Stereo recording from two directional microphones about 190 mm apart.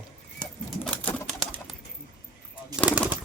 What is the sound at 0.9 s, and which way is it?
Pigeon, 5° left (ahead or behind).